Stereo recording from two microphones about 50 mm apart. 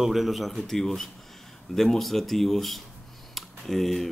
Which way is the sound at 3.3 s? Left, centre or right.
Centre.